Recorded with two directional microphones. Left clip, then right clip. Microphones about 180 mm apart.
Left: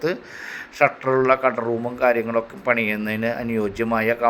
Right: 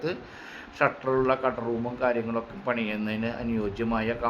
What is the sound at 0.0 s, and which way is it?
A man's voice, 25° left (ahead or behind).